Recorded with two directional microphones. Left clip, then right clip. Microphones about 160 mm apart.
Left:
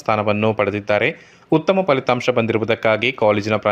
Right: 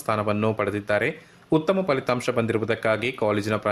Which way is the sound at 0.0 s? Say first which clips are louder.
Left 6 dB; 15° left (ahead or behind).